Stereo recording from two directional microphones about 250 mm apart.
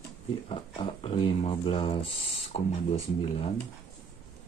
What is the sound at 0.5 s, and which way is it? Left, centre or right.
Speech, left.